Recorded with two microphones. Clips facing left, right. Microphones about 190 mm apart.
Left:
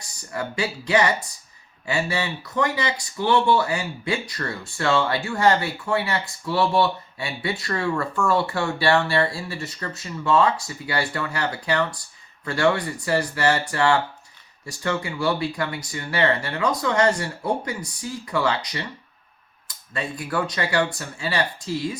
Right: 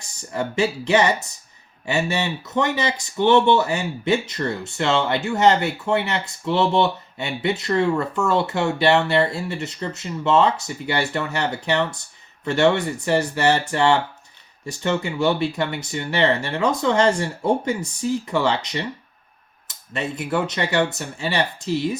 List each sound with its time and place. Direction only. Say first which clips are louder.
0.3 s speech: right 5 dB; 25° right (ahead or behind)